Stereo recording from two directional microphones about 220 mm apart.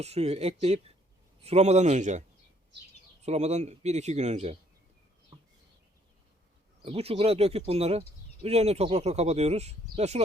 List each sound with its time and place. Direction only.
0.0 s speech: 30° right (ahead or behind)
6.8 s speech: 25° right (ahead or behind)